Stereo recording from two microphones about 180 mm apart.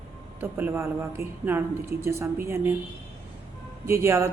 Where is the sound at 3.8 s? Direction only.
15° right (ahead or behind).